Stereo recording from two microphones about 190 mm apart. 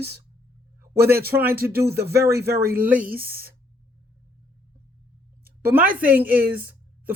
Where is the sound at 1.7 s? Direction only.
55° right (ahead or behind).